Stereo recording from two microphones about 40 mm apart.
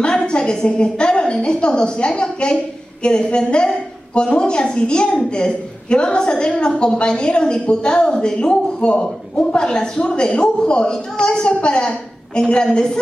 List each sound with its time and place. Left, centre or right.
0.3 s a woman's voice: centre